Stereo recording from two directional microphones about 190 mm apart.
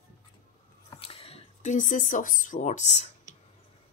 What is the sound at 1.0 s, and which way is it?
Speech, 30° left (ahead or behind).